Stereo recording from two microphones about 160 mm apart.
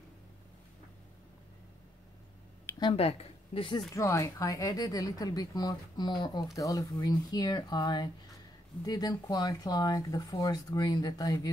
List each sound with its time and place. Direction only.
2.8 s a woman's voice: 35° left (ahead or behind)
3.9 s speech: 20° left (ahead or behind)